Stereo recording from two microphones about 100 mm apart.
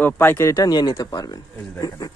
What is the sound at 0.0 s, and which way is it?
A man's voice, 20° left (ahead or behind).